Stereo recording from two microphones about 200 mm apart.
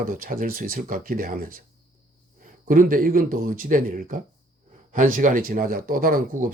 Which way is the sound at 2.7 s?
45° right (ahead or behind).